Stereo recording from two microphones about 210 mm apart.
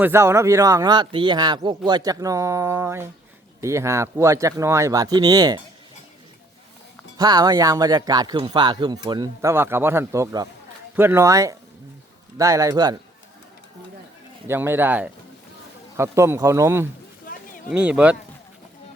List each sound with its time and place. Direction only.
0.0 s speech: 10° right (ahead or behind)
7.2 s speech: 20° right (ahead or behind)
14.4 s speech: 10° right (ahead or behind)
17.3 s a sound: 40° left (ahead or behind)
17.7 s speech: 5° right (ahead or behind)